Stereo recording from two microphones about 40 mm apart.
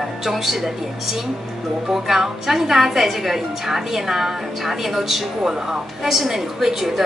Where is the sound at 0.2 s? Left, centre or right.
Centre.